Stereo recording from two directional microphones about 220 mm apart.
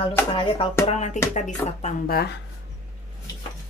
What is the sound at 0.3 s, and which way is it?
Music, 25° left (ahead or behind).